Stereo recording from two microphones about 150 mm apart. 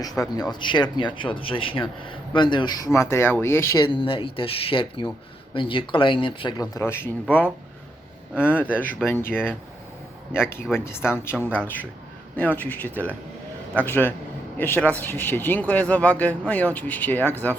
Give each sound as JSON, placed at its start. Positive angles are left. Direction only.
{"t": 0.0, "sound": "speech", "side_deg": 25}
{"t": 3.8, "sound": "speech", "side_deg": 35}
{"t": 6.7, "sound": "speech", "side_deg": 15}
{"t": 8.4, "sound": "speech", "side_deg": 10}